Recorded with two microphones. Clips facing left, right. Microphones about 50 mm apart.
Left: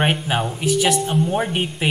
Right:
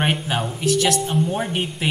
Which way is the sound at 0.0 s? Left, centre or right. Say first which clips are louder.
Left 2 dB; centre.